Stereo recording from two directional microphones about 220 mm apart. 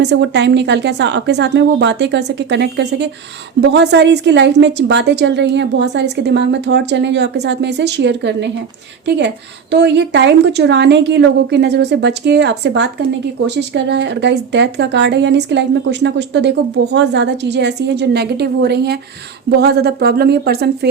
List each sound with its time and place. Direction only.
0.0 s speech: 50° right (ahead or behind)